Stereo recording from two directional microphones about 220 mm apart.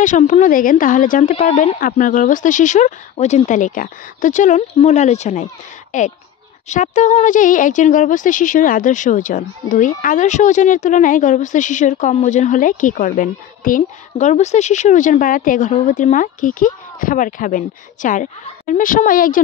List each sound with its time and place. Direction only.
0.0 s speech: 35° left (ahead or behind)